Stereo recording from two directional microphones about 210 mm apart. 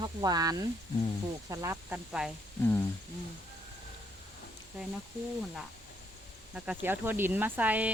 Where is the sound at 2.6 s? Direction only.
10° left (ahead or behind).